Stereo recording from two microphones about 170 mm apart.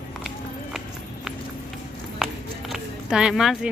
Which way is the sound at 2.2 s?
Centre (ahead or behind).